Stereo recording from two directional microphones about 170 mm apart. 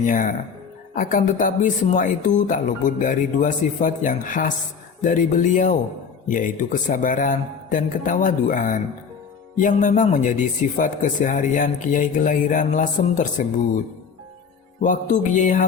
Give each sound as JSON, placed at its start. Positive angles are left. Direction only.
{"t": 0.0, "sound": "speech", "side_deg": 50}
{"t": 14.8, "sound": "speech", "side_deg": 50}